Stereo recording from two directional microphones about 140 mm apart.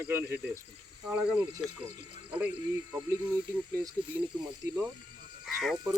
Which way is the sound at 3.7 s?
20° right (ahead or behind).